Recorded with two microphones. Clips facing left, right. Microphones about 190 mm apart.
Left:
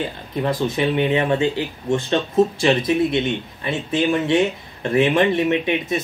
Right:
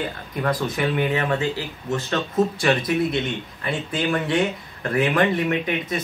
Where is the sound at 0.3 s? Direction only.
25° left (ahead or behind).